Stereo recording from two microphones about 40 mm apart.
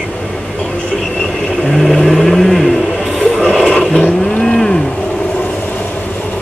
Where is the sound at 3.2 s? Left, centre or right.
Centre.